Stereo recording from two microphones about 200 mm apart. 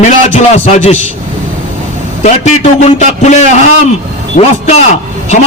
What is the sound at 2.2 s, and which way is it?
A man's voice, 35° left (ahead or behind).